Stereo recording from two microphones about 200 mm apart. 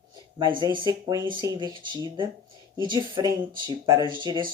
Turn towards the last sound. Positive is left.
turn(degrees=-20)  # may be behind; listen again after turning